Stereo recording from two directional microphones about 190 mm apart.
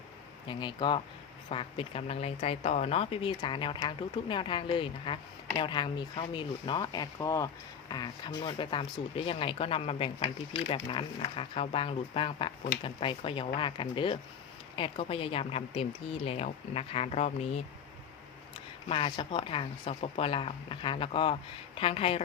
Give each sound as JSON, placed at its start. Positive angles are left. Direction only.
{"t": 0.4, "sound": "a woman's voice", "side_deg": 25}
{"t": 18.9, "sound": "speech", "side_deg": 30}